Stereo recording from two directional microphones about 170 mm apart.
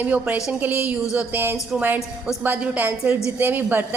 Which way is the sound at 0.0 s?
10° right (ahead or behind).